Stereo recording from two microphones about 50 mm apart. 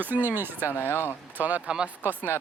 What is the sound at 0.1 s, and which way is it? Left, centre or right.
Speech, right.